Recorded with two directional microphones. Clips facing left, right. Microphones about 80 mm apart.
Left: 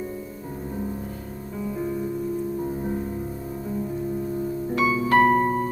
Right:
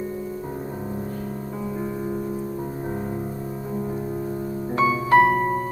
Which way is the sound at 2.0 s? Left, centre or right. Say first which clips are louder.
Even; right.